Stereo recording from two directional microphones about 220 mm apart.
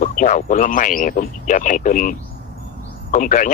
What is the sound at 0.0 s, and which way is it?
Speech, 35° left (ahead or behind).